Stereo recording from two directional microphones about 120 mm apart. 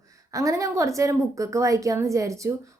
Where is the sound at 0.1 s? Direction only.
25° right (ahead or behind).